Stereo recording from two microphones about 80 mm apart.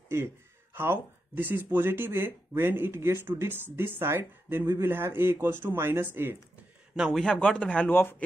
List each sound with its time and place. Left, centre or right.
0.7 s speech: right
7.2 s speech: centre
7.9 s speech: left